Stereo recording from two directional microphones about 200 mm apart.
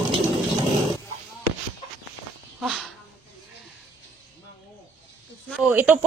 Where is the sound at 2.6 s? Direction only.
Centre (ahead or behind).